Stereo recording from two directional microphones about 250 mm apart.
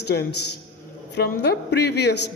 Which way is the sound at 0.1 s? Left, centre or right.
Left.